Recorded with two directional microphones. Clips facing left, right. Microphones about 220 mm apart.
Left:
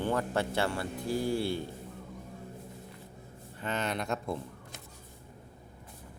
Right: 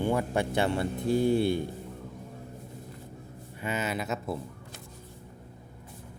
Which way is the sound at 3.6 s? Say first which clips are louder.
Right 2 dB; 5° right (ahead or behind).